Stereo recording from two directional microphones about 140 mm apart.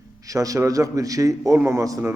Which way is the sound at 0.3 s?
25° right (ahead or behind).